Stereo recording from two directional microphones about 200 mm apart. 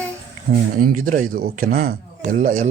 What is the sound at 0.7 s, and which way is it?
Speech, 45° right (ahead or behind).